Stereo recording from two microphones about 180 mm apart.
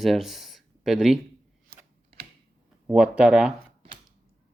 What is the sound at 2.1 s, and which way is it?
Typing, 30° right (ahead or behind).